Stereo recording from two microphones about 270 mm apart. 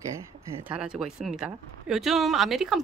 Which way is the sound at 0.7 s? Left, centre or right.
Centre.